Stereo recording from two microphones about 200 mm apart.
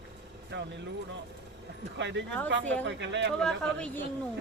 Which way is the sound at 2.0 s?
60° right (ahead or behind).